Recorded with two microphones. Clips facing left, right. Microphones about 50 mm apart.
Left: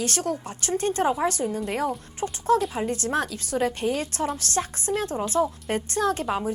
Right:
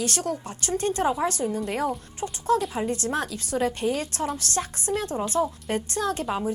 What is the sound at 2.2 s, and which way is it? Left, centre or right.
Speech, left.